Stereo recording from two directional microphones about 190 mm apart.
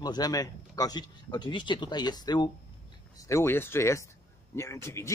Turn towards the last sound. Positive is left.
turn(degrees=15)  # may be behind; listen again after turning